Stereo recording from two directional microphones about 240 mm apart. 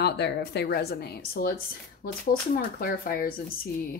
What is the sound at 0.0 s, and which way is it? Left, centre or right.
A woman's voice, left.